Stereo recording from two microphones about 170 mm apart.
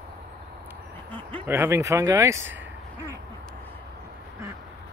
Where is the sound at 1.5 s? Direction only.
15° right (ahead or behind).